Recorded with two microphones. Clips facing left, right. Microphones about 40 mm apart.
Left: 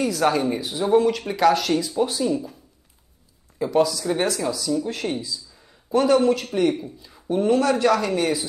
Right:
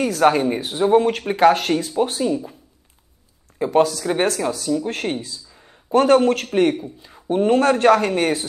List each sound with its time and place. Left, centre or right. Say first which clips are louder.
0.0 s speech: right 4 dB; right
3.5 s a man's voice: right 3 dB; right
7.0 s speech: right 3 dB; right